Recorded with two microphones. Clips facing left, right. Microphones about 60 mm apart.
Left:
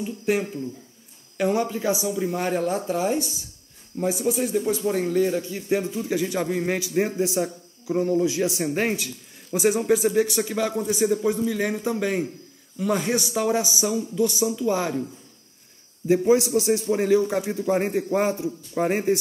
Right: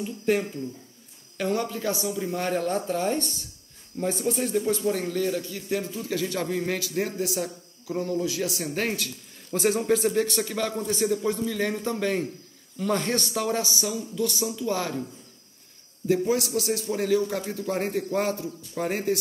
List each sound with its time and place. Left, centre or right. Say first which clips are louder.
0.0 s a man's voice: left 1 dB; centre
16.1 s a man's voice: left 5 dB; left